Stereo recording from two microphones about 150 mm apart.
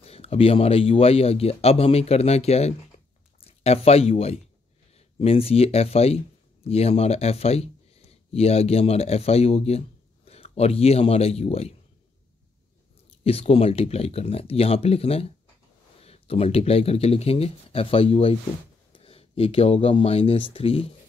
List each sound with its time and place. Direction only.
0.0 s speech: 40° left (ahead or behind)
13.2 s speech: 40° left (ahead or behind)